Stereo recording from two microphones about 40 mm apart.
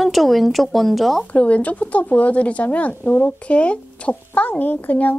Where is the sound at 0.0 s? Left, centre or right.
Centre.